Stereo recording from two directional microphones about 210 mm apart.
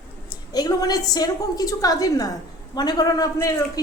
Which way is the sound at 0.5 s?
20° left (ahead or behind).